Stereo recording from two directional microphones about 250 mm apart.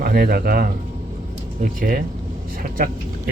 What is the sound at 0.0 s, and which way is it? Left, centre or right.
Speech, right.